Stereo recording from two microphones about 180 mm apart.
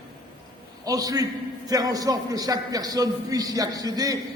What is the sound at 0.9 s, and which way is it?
A man's voice, 20° right (ahead or behind).